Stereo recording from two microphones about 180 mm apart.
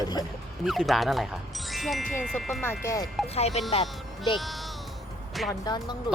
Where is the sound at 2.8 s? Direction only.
20° left (ahead or behind).